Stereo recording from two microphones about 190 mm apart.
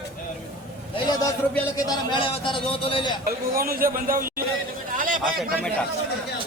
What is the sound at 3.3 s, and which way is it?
Speech, 50° right (ahead or behind).